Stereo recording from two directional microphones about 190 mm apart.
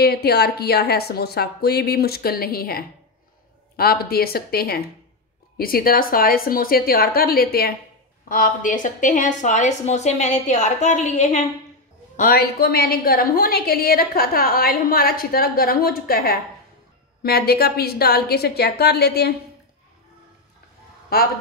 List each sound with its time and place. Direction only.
0.0 s a woman's voice: 55° left (ahead or behind); by 11.4 s 40° left (ahead or behind)
12.2 s a woman's voice: 50° left (ahead or behind)